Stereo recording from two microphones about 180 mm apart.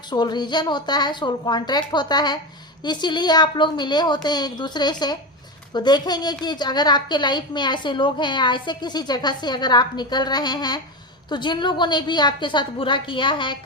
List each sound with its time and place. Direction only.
0.1 s a woman's voice: 25° left (ahead or behind)